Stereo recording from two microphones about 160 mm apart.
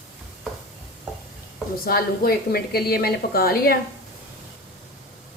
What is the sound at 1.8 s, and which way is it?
Speech, 70° left (ahead or behind).